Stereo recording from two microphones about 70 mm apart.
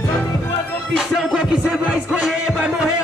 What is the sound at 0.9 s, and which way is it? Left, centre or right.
Music, centre.